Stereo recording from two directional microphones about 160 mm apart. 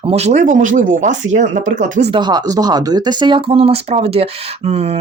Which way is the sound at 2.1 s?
25° right (ahead or behind).